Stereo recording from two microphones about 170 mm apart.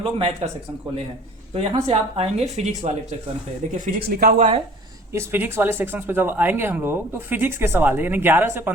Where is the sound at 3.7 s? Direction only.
55° right (ahead or behind).